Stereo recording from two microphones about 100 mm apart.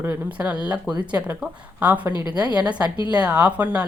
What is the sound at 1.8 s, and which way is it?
Speech, 15° right (ahead or behind).